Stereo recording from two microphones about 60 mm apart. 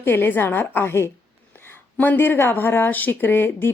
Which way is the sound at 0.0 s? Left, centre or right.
Left.